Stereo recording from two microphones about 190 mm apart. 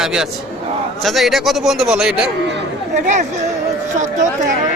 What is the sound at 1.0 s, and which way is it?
Speech, centre (ahead or behind).